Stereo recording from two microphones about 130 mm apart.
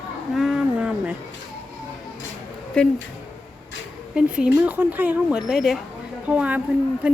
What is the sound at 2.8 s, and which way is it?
Speech, 5° left (ahead or behind).